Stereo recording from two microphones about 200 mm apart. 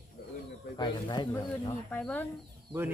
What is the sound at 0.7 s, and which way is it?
Speech, 20° left (ahead or behind).